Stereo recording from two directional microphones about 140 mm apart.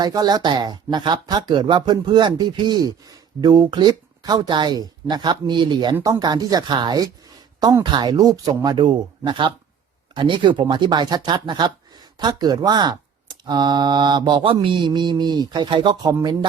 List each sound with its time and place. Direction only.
0.0 s speech: 30° right (ahead or behind)